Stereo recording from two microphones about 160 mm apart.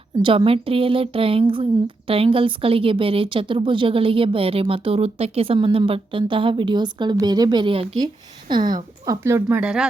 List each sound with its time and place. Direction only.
0.2 s speech: 35° right (ahead or behind); by 9.9 s 5° right (ahead or behind)